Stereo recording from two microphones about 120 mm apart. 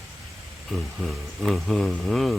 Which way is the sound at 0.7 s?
Centre (ahead or behind).